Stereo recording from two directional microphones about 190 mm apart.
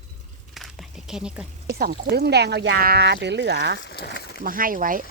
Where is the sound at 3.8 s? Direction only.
60° left (ahead or behind).